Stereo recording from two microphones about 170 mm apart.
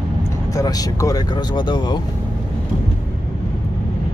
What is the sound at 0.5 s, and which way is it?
Speech, 20° left (ahead or behind).